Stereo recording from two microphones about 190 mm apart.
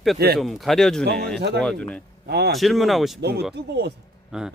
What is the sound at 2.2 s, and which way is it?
Speech, 60° right (ahead or behind).